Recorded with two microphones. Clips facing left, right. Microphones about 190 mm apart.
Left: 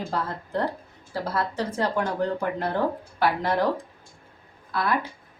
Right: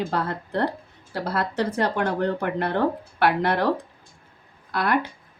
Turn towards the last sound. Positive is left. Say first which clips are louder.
# right 3 dB
turn(degrees=-70)  # may be behind; listen again after turning